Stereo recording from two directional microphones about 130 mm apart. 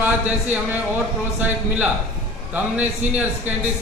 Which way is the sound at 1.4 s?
10° right (ahead or behind).